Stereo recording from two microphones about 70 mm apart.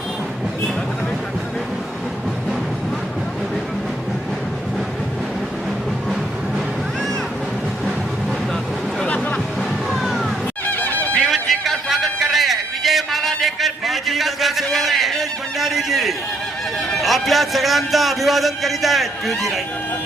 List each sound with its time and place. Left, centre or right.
9.0 s music: centre
9.6 s music: centre
10.7 s music: left
11.2 s a sound: centre
17.0 s a man's voice: centre